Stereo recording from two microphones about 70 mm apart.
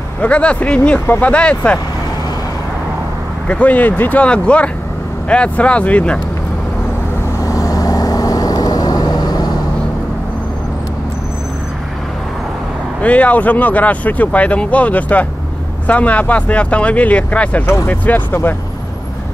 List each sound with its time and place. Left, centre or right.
0.2 s speech: centre
3.4 s speech: centre
7.3 s vehicle: left
13.0 s speech: centre